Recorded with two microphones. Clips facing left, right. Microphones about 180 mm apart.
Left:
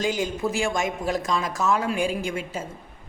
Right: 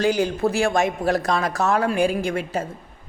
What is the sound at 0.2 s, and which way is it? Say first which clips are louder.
Speech: right 5 dB; 65° right (ahead or behind).